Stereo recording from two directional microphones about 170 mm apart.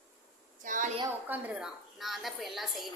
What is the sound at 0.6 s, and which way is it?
Speech, 50° right (ahead or behind).